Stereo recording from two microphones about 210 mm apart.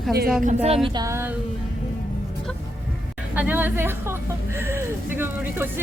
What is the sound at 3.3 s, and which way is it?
Speech, 10° right (ahead or behind).